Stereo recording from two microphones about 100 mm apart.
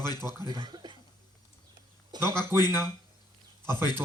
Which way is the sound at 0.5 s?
50° right (ahead or behind).